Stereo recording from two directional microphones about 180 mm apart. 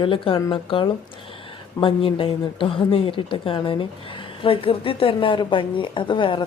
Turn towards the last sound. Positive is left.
turn(degrees=25)  # may be behind; listen again after turning